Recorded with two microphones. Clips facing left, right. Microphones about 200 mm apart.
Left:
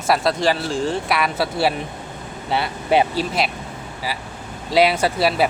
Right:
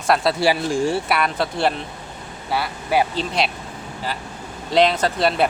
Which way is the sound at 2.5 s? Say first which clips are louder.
Left 3 dB; 25° left (ahead or behind).